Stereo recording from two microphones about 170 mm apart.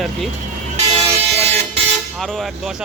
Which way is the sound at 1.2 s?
40° right (ahead or behind).